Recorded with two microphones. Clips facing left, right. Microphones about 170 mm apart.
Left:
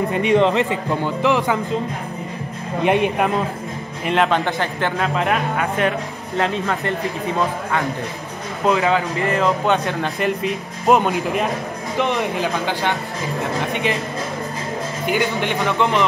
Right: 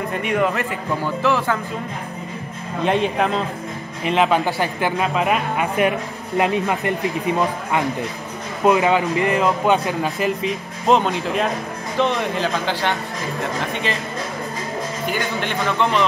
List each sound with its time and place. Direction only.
0.2 s speech: 25° left (ahead or behind)
2.8 s speech: 15° left (ahead or behind)
4.0 s speech: centre (ahead or behind)
8.6 s speech: 15° right (ahead or behind)
9.4 s speech: 5° right (ahead or behind)
10.9 s speech: 10° left (ahead or behind)
15.0 s speech: 15° left (ahead or behind)